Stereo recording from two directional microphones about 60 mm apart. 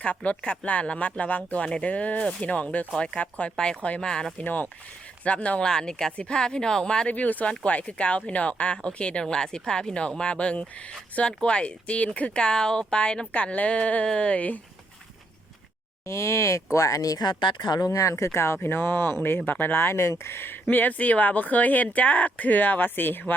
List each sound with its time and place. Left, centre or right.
0.0 s speech: left
4.4 s speech: left
7.1 s speech: left
16.0 s speech: left
17.7 s speech: left